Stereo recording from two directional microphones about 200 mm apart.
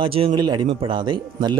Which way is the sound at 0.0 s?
25° right (ahead or behind).